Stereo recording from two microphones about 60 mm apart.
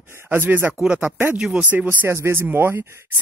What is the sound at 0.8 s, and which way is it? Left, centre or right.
Speech, centre.